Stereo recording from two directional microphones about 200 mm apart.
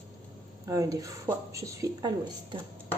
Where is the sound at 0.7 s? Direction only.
15° right (ahead or behind).